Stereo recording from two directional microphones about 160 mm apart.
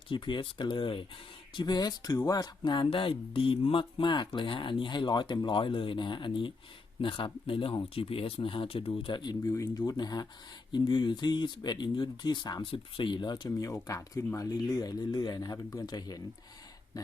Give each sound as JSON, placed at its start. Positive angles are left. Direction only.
{"t": 0.1, "sound": "speech", "side_deg": 30}
{"t": 9.5, "sound": "speech", "side_deg": 15}